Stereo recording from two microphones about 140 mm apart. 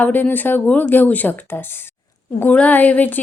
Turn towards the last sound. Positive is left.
turn(degrees=10)  # may be behind; listen again after turning